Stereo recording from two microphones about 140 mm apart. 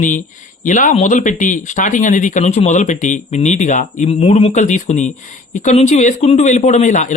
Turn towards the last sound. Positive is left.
turn(degrees=60)  # may be behind; listen again after turning